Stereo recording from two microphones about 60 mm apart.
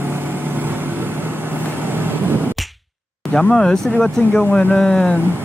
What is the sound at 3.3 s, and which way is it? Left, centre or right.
Speech, centre.